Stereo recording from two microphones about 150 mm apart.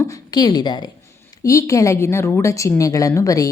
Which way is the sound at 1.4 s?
20° left (ahead or behind).